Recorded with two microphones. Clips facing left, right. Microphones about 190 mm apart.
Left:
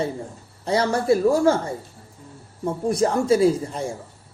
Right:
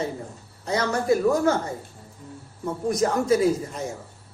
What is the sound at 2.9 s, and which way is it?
Speech, 30° left (ahead or behind).